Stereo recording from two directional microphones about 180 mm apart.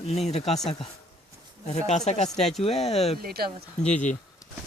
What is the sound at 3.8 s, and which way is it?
Speech, 40° left (ahead or behind).